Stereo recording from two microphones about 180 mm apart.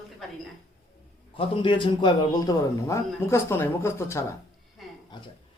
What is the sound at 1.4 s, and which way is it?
A man's voice, 30° left (ahead or behind).